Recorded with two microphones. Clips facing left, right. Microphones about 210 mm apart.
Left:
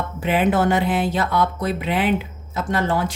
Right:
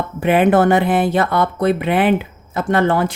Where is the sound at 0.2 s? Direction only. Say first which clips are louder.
Right 6 dB; 60° right (ahead or behind).